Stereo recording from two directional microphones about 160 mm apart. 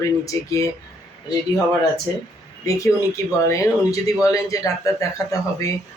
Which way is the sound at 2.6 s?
20° left (ahead or behind).